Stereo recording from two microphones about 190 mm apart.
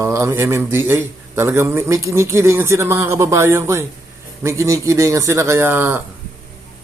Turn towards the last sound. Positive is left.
turn(degrees=-10)  # may be behind; listen again after turning